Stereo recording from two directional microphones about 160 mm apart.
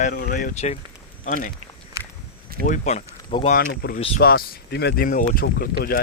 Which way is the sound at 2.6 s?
50° left (ahead or behind).